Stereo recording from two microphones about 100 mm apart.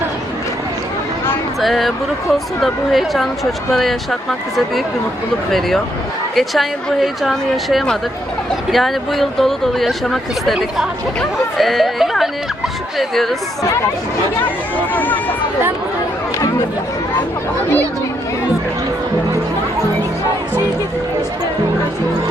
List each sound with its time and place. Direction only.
1.6 s speech: centre (ahead or behind)
14.8 s speech: 20° left (ahead or behind)